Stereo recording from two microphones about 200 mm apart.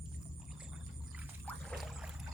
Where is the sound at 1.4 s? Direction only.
Centre (ahead or behind).